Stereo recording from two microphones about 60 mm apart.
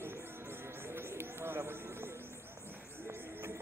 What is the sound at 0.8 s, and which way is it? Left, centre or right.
Run, right.